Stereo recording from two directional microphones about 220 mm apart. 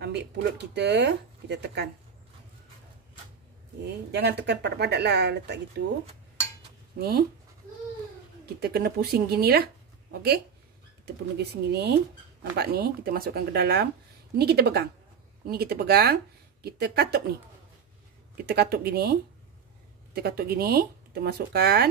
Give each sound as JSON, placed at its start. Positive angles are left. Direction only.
{"t": 0.0, "sound": "speech", "side_deg": -50}
{"t": 4.1, "sound": "speech", "side_deg": -45}
{"t": 7.0, "sound": "speech", "side_deg": -45}
{"t": 8.5, "sound": "speech", "side_deg": -45}
{"t": 11.3, "sound": "speech", "side_deg": -50}
{"t": 18.4, "sound": "speech", "side_deg": -45}
{"t": 20.2, "sound": "speech", "side_deg": -45}